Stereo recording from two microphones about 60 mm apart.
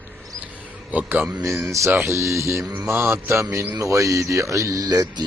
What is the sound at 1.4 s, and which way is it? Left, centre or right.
Speech, right.